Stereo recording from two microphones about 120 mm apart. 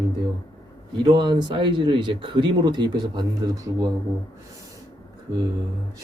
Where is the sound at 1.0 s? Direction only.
40° right (ahead or behind).